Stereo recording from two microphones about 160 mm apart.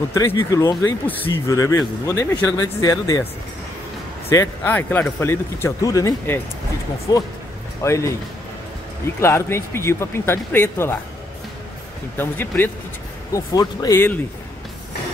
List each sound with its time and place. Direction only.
0.1 s speech: 20° left (ahead or behind)
4.3 s speech: 15° left (ahead or behind)
9.2 s speech: 15° left (ahead or behind)
12.2 s speech: 10° left (ahead or behind)